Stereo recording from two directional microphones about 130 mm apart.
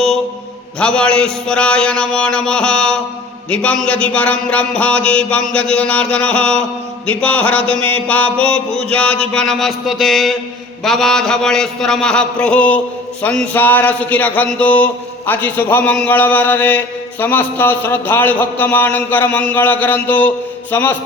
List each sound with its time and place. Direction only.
0.8 s a man's voice: 5° left (ahead or behind)
10.8 s a sound: 5° left (ahead or behind)
13.2 s a man's voice: 10° left (ahead or behind)